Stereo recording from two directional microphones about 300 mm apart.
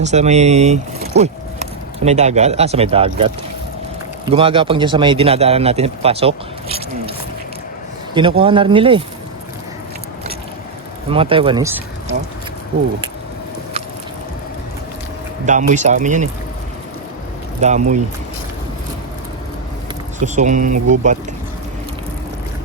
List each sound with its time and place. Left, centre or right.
0.0 s speech: right
8.1 s speech: centre
11.1 s speech: centre
15.4 s speech: right
17.6 s speech: right
20.1 s speech: right